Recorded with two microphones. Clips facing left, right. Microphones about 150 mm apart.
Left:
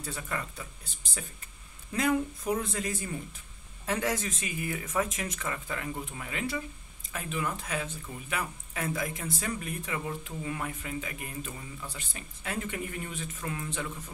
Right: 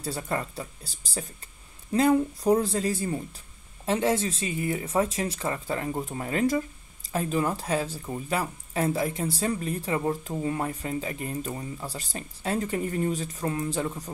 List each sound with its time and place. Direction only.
0.0 s speech: 35° right (ahead or behind)